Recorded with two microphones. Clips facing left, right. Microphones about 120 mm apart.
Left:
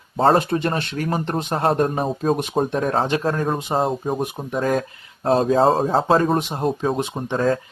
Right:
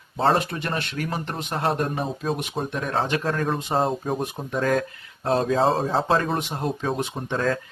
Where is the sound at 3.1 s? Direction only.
25° left (ahead or behind).